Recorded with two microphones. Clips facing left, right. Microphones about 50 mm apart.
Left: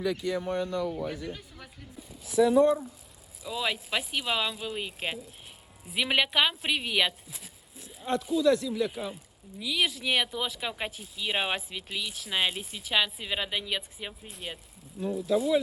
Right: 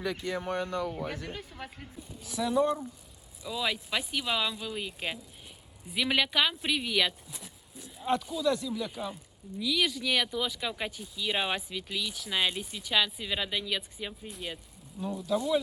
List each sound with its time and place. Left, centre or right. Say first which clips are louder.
0.0 s speech: left 4 dB; centre
0.3 s speech: left 2 dB; right
1.1 s a man's voice: left 1 dB; right
2.2 s speech: left 6 dB; centre
7.3 s speech: right 1 dB; centre
14.3 s speech: right 1 dB; centre